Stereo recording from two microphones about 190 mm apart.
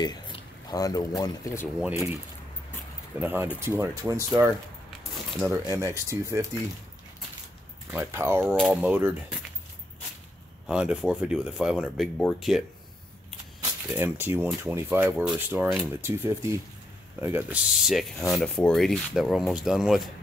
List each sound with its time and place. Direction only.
0.7 s speech: 20° left (ahead or behind)
1.8 s speech: 10° right (ahead or behind)
3.2 s speech: 10° right (ahead or behind)
7.9 s speech: 15° right (ahead or behind)
10.7 s speech: 5° right (ahead or behind)
13.8 s speech: 10° right (ahead or behind)